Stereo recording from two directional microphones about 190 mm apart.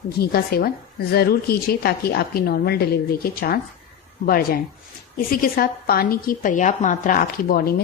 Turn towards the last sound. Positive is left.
turn(degrees=50)  # may be behind; listen again after turning